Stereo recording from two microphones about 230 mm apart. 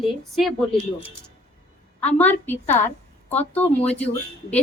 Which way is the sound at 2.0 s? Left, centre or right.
Centre.